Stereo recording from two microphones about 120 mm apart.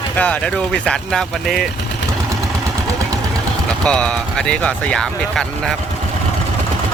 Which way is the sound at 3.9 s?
10° left (ahead or behind).